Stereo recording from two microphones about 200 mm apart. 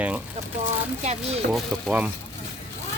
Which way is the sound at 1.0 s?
35° right (ahead or behind).